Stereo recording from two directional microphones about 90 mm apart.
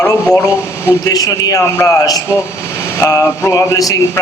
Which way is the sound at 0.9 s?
40° left (ahead or behind).